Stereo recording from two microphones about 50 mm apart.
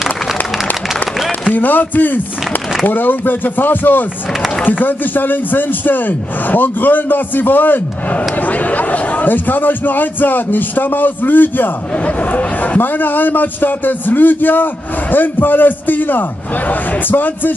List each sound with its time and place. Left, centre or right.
1.5 s a man's voice: left